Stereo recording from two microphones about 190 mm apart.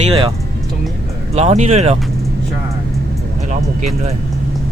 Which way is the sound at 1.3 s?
35° right (ahead or behind).